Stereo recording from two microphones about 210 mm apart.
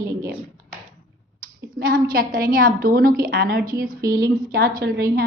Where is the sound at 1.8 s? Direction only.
45° right (ahead or behind).